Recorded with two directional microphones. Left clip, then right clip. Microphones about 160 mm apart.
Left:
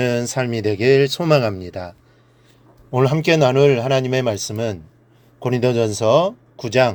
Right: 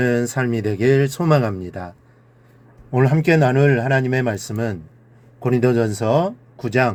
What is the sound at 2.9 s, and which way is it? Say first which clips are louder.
Speech: left 1 dB; 45° left (ahead or behind).